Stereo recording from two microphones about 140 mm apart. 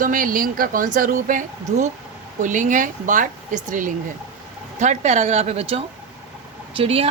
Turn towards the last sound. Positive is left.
turn(degrees=-40)  # may be behind; listen again after turning